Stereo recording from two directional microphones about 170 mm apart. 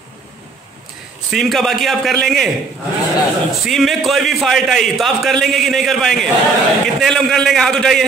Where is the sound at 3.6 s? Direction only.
Centre (ahead or behind).